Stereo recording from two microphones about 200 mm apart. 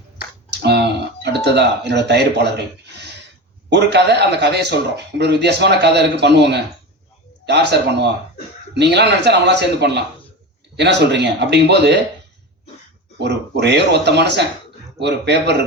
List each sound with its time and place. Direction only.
0.5 s speech: 60° right (ahead or behind)
3.7 s speech: 60° right (ahead or behind)
13.1 s speech: 60° right (ahead or behind)